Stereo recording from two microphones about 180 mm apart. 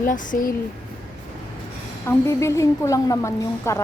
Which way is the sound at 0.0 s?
45° left (ahead or behind).